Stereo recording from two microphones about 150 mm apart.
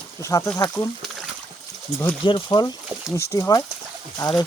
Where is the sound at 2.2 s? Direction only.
30° left (ahead or behind).